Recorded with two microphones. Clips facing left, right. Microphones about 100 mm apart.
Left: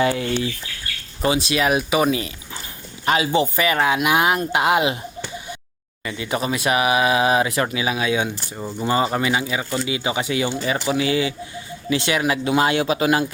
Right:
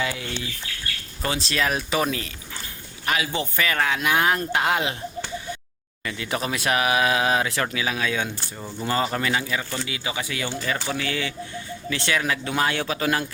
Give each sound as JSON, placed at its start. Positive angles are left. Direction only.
{"t": 0.0, "sound": "speech", "side_deg": 40}
{"t": 1.2, "sound": "speech", "side_deg": 10}
{"t": 3.1, "sound": "speech", "side_deg": 20}
{"t": 6.1, "sound": "speech", "side_deg": 5}